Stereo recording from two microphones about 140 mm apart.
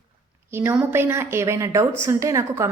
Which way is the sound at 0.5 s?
15° right (ahead or behind).